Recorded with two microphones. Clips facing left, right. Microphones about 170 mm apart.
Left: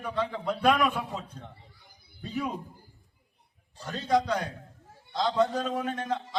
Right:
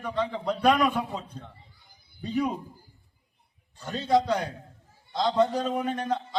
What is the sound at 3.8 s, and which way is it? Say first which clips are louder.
Speech: right 2 dB; centre (ahead or behind).